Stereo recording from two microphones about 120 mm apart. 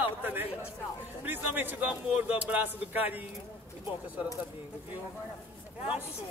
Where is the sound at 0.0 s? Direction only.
15° right (ahead or behind).